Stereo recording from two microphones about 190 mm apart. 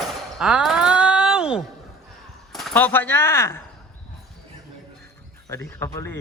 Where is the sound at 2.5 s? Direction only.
5° left (ahead or behind).